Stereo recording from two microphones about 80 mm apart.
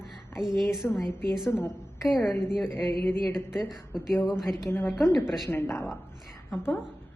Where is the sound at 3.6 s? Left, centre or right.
Centre.